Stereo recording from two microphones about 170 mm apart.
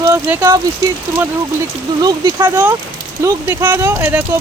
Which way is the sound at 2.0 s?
25° right (ahead or behind).